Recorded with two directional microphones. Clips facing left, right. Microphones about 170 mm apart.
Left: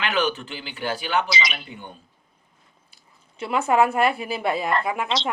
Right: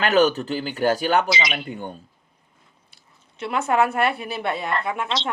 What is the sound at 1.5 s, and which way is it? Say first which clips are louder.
Speech: right 7 dB; 45° right (ahead or behind).